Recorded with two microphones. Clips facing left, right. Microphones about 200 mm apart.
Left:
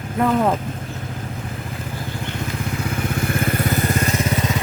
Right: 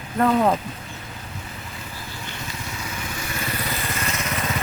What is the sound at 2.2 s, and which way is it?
Vehicle, 55° left (ahead or behind).